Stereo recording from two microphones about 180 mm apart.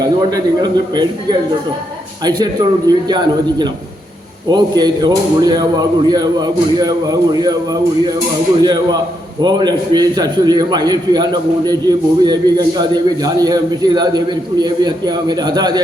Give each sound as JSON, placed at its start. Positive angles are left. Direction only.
{"t": 0.2, "sound": "a man's voice", "side_deg": -25}